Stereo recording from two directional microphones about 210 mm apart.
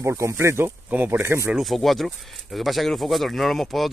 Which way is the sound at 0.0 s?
15° right (ahead or behind).